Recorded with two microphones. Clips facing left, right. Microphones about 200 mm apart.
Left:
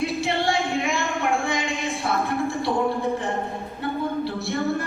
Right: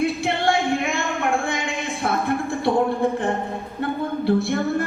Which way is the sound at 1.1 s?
Centre (ahead or behind).